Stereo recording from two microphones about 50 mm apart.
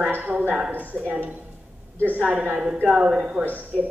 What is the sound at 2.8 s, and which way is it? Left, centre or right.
Speech, centre.